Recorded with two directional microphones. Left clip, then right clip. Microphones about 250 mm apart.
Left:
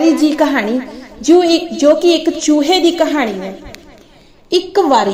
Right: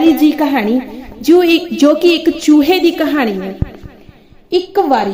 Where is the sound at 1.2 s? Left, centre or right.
Right.